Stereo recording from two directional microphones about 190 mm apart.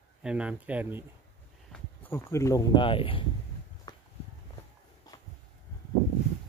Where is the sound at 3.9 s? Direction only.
20° left (ahead or behind).